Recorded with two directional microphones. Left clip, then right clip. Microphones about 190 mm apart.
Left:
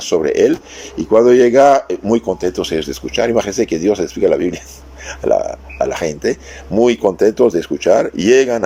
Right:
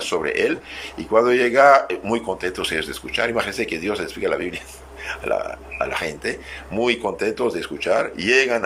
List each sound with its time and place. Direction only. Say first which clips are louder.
0.0 s speech: left 8 dB; 35° left (ahead or behind)